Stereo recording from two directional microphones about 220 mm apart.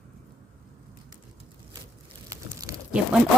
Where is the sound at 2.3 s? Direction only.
15° right (ahead or behind).